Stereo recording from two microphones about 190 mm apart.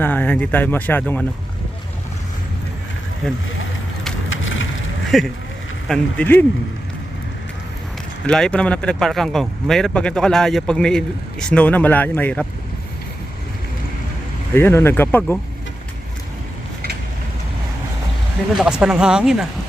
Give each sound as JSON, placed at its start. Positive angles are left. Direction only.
{"t": 0.0, "sound": "speech", "side_deg": 10}
{"t": 4.3, "sound": "a sound", "side_deg": 90}
{"t": 5.1, "sound": "speech", "side_deg": 0}
{"t": 8.3, "sound": "speech", "side_deg": 5}
{"t": 14.5, "sound": "speech", "side_deg": 15}
{"t": 18.5, "sound": "speech", "side_deg": -5}